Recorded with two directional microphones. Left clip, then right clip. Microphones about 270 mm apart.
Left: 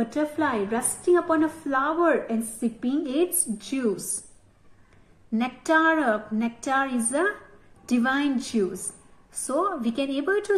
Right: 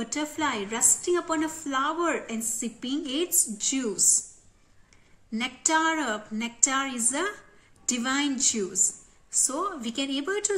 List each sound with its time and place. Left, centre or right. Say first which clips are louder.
0.0 s a woman's voice: left 4 dB; right
5.3 s a woman's voice: left 3 dB; right